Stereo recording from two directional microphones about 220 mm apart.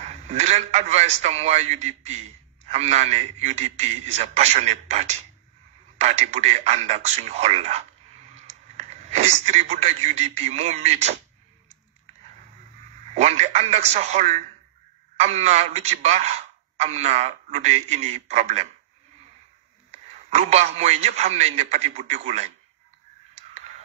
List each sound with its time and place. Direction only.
0.0 s a man's voice: 30° right (ahead or behind)
13.1 s a man's voice: 30° right (ahead or behind)
19.9 s a man's voice: 30° right (ahead or behind)